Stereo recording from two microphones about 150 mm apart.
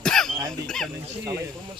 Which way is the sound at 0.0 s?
5° left (ahead or behind).